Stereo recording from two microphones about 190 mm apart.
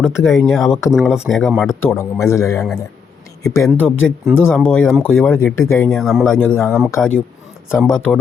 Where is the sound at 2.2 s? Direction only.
15° left (ahead or behind).